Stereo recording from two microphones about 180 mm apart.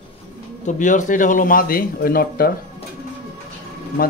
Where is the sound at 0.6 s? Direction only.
45° left (ahead or behind).